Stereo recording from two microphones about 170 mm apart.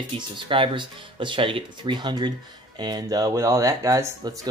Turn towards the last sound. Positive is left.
turn(degrees=-20)  # may be behind; listen again after turning